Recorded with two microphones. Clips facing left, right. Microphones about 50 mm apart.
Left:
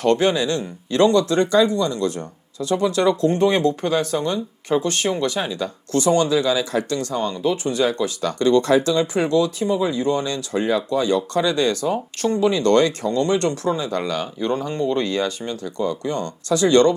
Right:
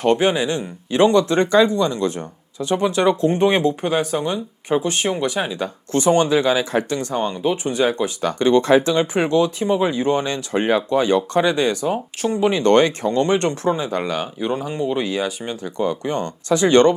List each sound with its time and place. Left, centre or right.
0.0 s speech: right
12.4 s speech: right; by 15.3 s centre
15.4 s speech: right